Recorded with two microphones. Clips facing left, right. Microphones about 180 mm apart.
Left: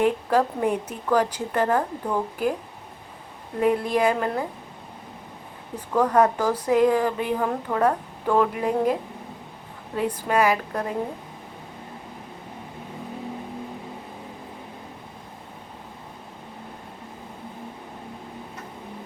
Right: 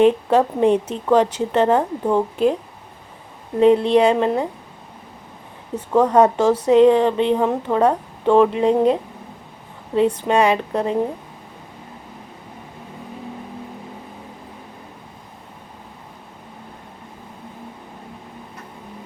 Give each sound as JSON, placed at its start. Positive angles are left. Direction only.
{"t": 0.0, "sound": "speech", "side_deg": -25}
{"t": 3.6, "sound": "speech", "side_deg": -25}
{"t": 5.7, "sound": "speech", "side_deg": -25}
{"t": 10.2, "sound": "speech", "side_deg": -25}